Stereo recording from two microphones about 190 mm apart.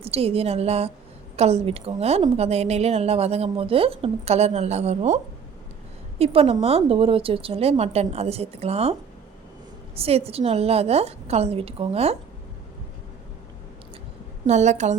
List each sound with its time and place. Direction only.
0.0 s a woman's voice: 30° right (ahead or behind)
14.4 s a woman's voice: 35° right (ahead or behind)